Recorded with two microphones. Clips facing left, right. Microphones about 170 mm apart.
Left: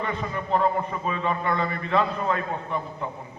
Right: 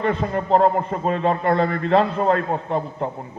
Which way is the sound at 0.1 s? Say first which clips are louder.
Right 7 dB; 90° right.